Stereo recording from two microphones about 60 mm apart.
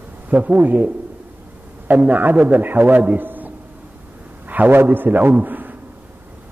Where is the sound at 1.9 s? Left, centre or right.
Right.